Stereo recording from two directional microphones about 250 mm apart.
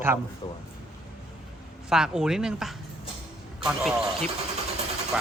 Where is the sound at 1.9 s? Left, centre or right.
Centre.